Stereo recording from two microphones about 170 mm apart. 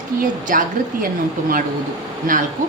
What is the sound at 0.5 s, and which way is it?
Speech, 55° right (ahead or behind).